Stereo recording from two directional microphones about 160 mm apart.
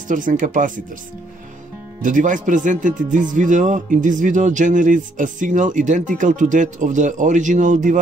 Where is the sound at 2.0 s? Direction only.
55° right (ahead or behind).